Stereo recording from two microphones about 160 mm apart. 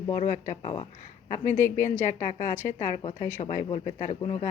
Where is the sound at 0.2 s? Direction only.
50° left (ahead or behind).